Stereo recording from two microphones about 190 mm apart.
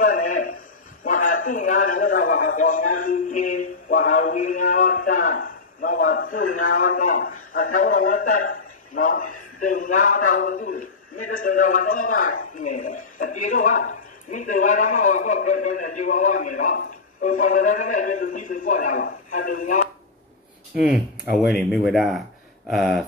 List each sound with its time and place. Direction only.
0.0 s a sound: 45° left (ahead or behind)
1.0 s a man's voice: 45° left (ahead or behind)
21.3 s speech: centre (ahead or behind)